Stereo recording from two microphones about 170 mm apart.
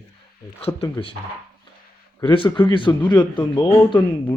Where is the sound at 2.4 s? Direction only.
30° left (ahead or behind).